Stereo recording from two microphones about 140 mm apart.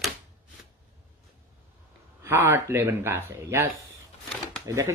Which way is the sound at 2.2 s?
20° right (ahead or behind).